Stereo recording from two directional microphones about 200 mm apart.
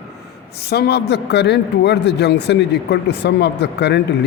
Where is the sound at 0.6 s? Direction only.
55° left (ahead or behind).